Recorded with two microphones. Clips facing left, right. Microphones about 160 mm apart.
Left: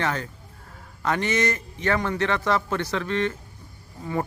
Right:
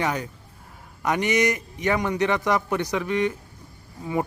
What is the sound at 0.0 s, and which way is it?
Speech, 15° right (ahead or behind).